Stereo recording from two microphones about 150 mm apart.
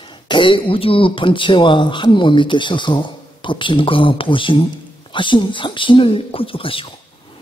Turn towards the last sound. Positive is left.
turn(degrees=35)  # may be behind; listen again after turning